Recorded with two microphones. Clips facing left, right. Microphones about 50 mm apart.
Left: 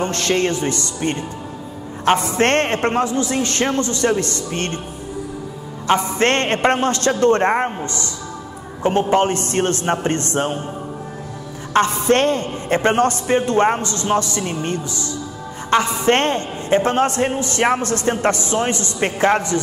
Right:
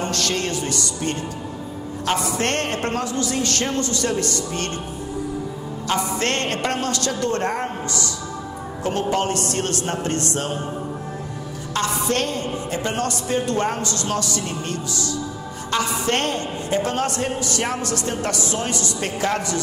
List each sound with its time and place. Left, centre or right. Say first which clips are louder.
0.0 s a man's voice: left 5 dB; left
5.9 s a man's voice: left 6 dB; left
11.7 s a man's voice: left 7 dB; left